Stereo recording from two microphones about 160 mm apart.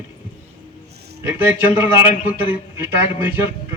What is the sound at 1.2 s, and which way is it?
A man's voice, 15° right (ahead or behind).